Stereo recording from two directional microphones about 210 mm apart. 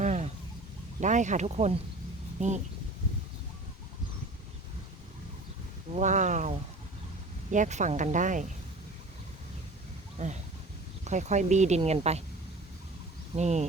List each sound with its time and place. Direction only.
0.0 s a sound: 35° right (ahead or behind)
1.0 s speech: 35° right (ahead or behind)
5.9 s speech: 35° right (ahead or behind)
10.2 s speech: 30° right (ahead or behind)
13.3 s speech: 35° right (ahead or behind)